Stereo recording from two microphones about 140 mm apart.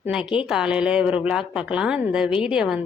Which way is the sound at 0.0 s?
5° right (ahead or behind).